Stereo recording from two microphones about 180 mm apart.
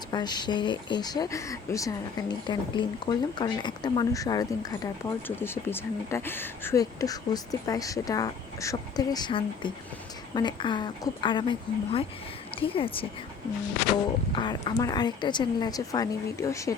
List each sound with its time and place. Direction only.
0.1 s speech: 25° left (ahead or behind)
14.3 s speech: 25° left (ahead or behind)